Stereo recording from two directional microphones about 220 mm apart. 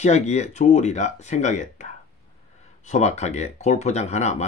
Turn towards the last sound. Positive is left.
turn(degrees=30)  # may be behind; listen again after turning